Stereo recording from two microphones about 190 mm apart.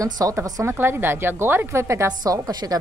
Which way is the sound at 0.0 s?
15° right (ahead or behind).